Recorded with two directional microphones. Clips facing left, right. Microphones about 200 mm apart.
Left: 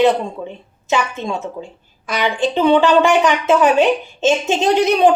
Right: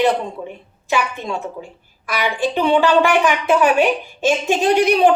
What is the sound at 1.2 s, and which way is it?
Speech, 20° left (ahead or behind).